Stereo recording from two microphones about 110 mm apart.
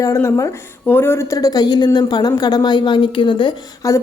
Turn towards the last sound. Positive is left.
turn(degrees=30)  # may be behind; listen again after turning